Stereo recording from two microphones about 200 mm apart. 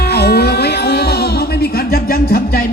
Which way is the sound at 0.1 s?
55° left (ahead or behind).